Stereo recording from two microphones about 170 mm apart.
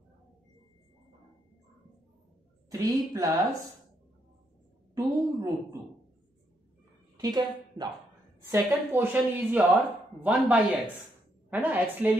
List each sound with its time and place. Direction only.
2.7 s a woman's voice: 20° right (ahead or behind)
4.9 s a woman's voice: 20° right (ahead or behind)
7.2 s a woman's voice: 25° right (ahead or behind)
8.4 s a woman's voice: 15° right (ahead or behind)